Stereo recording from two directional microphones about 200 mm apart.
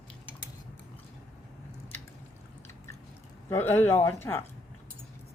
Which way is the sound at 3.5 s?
10° left (ahead or behind).